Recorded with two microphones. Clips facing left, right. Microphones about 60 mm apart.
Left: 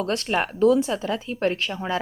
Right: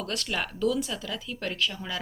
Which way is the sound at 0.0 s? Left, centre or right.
Left.